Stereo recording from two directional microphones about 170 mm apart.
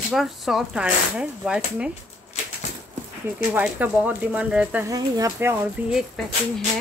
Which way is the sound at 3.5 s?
10° right (ahead or behind).